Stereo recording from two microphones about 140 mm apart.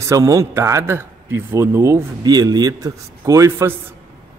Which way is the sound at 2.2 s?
30° right (ahead or behind).